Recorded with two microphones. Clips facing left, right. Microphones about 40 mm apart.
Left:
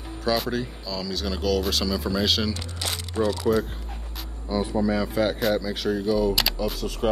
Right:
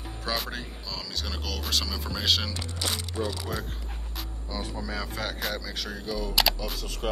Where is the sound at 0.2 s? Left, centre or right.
Centre.